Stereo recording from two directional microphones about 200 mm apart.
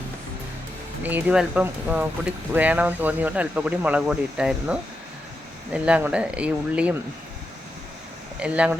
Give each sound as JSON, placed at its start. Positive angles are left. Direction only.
{"t": 1.0, "sound": "speech", "side_deg": -5}
{"t": 8.4, "sound": "speech", "side_deg": -5}